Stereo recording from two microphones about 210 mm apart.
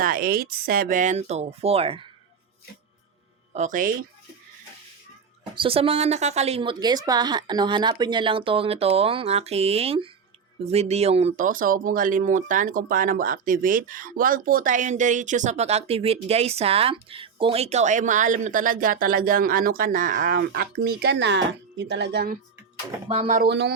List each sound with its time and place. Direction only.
0.0 s speech: 45° right (ahead or behind)
3.5 s speech: 35° right (ahead or behind)
5.5 s speech: 25° right (ahead or behind); by 22.4 s 50° right (ahead or behind)
23.0 s speech: 30° right (ahead or behind)
23.5 s speech: 55° right (ahead or behind)